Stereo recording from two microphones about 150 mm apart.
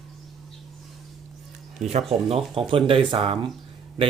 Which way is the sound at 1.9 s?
45° right (ahead or behind).